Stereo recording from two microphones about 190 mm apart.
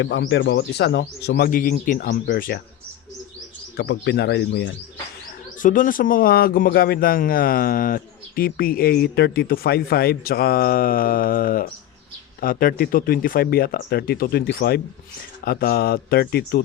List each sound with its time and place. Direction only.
0.0 s speech: 70° left (ahead or behind); by 2.6 s 55° left (ahead or behind)
3.8 s speech: 65° left (ahead or behind)
5.6 s speech: 45° left (ahead or behind)